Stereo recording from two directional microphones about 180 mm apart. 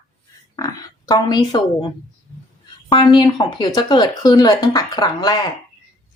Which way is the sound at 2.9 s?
25° left (ahead or behind).